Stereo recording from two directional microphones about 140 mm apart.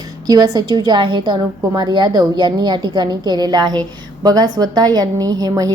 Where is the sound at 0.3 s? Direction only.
30° right (ahead or behind).